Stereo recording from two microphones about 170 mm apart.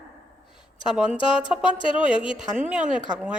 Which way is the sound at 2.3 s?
5° right (ahead or behind).